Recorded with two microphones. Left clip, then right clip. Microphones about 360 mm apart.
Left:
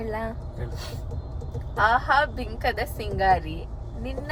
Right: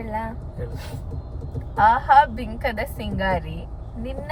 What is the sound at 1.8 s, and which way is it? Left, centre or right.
A woman's voice, centre.